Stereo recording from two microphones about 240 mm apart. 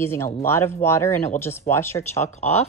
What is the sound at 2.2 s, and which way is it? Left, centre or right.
Speech, left.